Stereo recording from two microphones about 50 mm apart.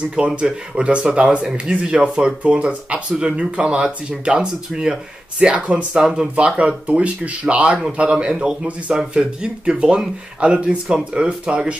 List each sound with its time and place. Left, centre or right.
0.4 s speech: centre